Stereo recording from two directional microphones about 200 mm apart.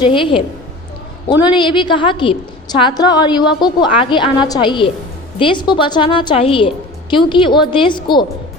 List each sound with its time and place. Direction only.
0.0 s a woman's voice: 25° left (ahead or behind)